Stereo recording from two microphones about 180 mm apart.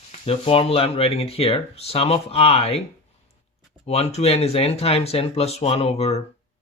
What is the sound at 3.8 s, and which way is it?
Speech, 35° left (ahead or behind).